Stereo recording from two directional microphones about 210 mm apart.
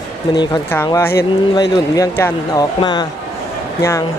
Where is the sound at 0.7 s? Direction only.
10° left (ahead or behind).